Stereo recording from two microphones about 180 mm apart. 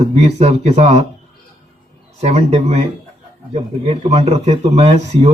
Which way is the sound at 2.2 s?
35° right (ahead or behind).